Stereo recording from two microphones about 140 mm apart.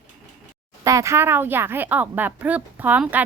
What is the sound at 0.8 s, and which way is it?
Speech, 25° right (ahead or behind).